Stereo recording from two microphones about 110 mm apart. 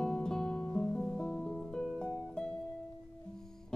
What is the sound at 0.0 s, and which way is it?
Music, 5° left (ahead or behind).